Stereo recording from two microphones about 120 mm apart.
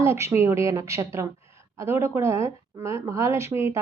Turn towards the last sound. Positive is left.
turn(degrees=-20)  # may be behind; listen again after turning